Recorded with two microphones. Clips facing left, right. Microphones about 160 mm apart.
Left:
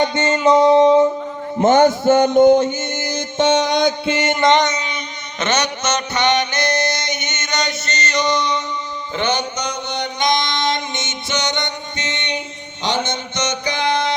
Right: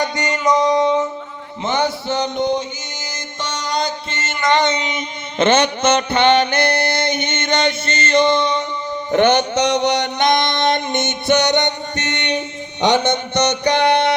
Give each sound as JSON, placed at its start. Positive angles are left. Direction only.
{"t": 0.0, "sound": "music", "side_deg": 25}
{"t": 1.5, "sound": "music", "side_deg": 45}
{"t": 4.7, "sound": "music", "side_deg": -20}
{"t": 6.6, "sound": "music", "side_deg": -60}
{"t": 7.4, "sound": "music", "side_deg": -30}
{"t": 9.1, "sound": "mantra", "side_deg": -60}
{"t": 12.8, "sound": "a sound", "side_deg": -65}